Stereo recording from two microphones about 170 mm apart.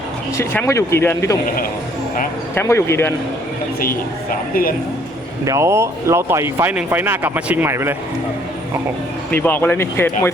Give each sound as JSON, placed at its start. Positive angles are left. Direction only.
{"t": 0.3, "sound": "speech", "side_deg": 20}
{"t": 2.6, "sound": "speech", "side_deg": 15}
{"t": 3.8, "sound": "a woman's voice", "side_deg": 60}
{"t": 5.5, "sound": "speech", "side_deg": -15}
{"t": 9.3, "sound": "speech", "side_deg": 10}